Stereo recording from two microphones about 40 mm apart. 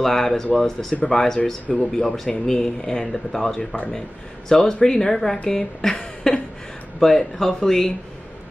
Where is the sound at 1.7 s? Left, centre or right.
Left.